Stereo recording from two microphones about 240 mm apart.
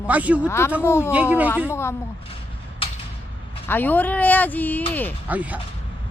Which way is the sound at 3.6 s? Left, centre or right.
Centre.